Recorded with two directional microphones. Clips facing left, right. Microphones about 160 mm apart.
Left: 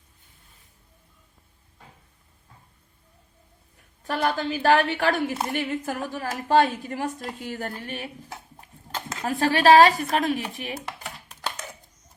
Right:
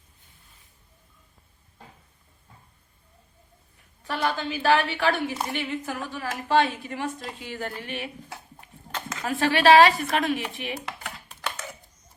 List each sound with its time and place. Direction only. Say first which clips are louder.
4.0 s a woman's voice: left 2 dB; 45° left (ahead or behind)